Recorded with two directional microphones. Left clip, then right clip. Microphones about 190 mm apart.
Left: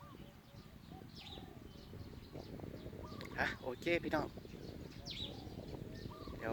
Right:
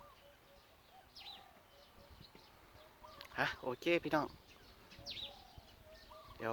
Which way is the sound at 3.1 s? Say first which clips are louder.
Right 1 dB; 15° right (ahead or behind).